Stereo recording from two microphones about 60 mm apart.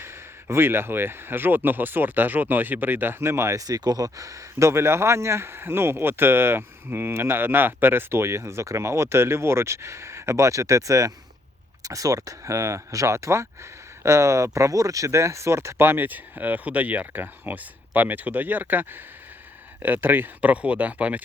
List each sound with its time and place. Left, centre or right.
0.0 s speech: right
3.5 s speech: right
4.7 s speech: right
11.8 s speech: right